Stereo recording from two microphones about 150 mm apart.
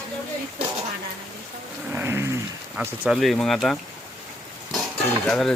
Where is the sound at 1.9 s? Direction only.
15° right (ahead or behind).